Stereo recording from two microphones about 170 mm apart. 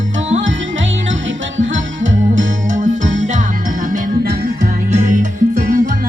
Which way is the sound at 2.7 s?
50° right (ahead or behind).